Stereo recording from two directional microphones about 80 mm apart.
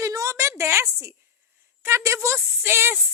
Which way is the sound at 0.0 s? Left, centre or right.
Right.